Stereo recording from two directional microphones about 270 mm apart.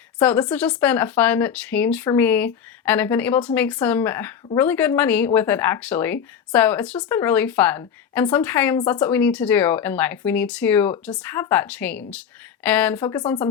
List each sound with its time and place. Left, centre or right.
0.2 s speech: centre